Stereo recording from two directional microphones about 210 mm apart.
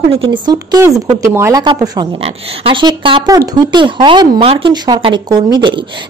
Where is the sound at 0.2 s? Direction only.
20° right (ahead or behind).